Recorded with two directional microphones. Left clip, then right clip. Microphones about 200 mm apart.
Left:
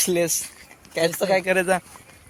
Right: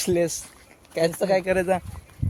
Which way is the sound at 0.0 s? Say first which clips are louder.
Left 1 dB; 10° right (ahead or behind).